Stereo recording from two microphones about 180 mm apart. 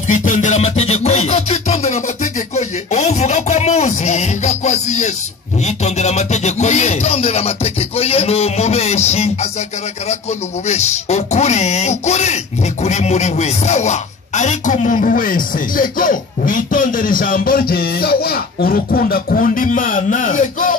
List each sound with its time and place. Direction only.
0.1 s music: 45° left (ahead or behind)
10.7 s music: 40° left (ahead or behind)
12.8 s a man's voice: 40° left (ahead or behind)